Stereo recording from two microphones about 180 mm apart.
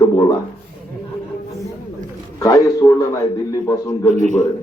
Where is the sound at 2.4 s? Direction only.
20° left (ahead or behind).